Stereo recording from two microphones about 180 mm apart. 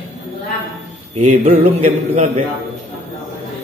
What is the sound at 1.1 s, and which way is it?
A man's voice, 40° right (ahead or behind).